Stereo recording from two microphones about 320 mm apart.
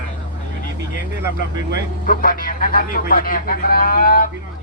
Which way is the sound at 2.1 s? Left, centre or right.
Left.